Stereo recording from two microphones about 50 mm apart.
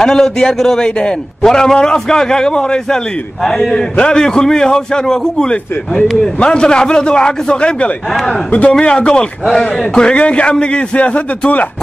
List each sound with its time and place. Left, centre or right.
0.0 s a man's voice: centre
8.7 s a man's voice: centre